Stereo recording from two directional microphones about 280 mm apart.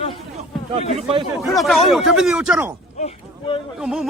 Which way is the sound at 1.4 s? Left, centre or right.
Centre.